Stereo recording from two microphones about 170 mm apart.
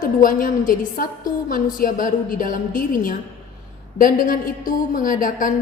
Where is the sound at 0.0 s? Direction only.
55° left (ahead or behind).